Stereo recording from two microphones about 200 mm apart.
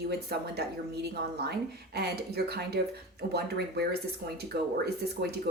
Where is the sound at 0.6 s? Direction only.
55° right (ahead or behind).